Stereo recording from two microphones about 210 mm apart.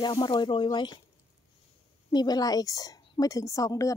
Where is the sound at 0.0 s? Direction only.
20° left (ahead or behind).